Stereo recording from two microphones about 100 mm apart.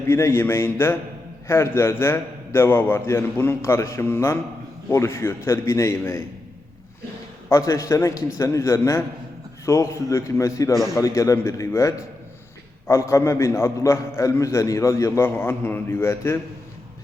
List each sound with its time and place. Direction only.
0.1 s a man's voice: 25° left (ahead or behind)
7.5 s a man's voice: 30° left (ahead or behind)